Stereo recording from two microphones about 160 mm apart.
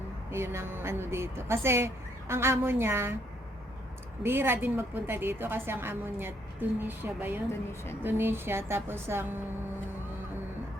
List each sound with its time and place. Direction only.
0.3 s a woman's voice: 15° right (ahead or behind)
4.2 s a woman's voice: 15° right (ahead or behind)